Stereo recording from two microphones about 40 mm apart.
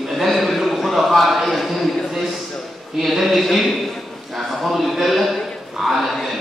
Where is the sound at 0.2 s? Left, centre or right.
Centre.